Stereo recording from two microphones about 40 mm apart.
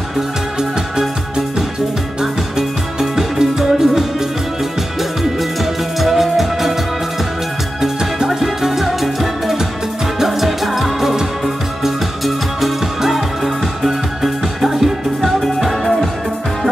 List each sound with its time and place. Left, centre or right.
0.6 s music: centre
2.5 s music: centre
5.4 s music: centre
7.8 s music: centre